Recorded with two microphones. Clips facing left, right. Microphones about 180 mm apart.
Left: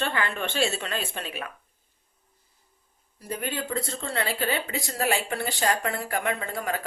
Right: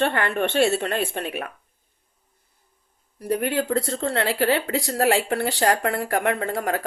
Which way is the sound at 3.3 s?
70° right (ahead or behind).